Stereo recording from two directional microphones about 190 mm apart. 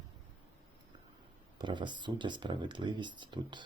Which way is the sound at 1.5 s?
25° right (ahead or behind).